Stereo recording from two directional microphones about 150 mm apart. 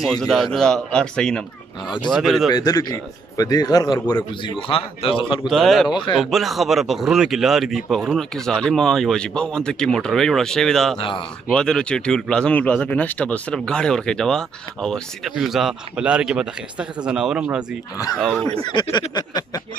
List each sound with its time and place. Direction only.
0.0 s speech: 5° left (ahead or behind)
2.5 s a man's voice: 25° left (ahead or behind)
4.1 s speech: 35° left (ahead or behind)
5.5 s speech: centre (ahead or behind)
5.9 s speech: 30° left (ahead or behind)
6.3 s speech: centre (ahead or behind)
11.0 s speech: 35° left (ahead or behind)
11.5 s speech: 5° left (ahead or behind)
18.1 s speech: 5° left (ahead or behind)
18.9 s a man's voice: 25° left (ahead or behind)